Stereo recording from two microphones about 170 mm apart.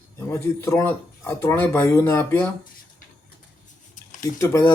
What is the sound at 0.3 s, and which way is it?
Speech, 15° left (ahead or behind).